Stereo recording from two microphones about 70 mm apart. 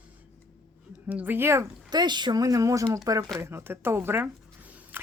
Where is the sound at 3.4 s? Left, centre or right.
Right.